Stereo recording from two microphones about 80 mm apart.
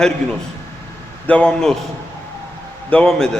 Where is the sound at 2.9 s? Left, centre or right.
Centre.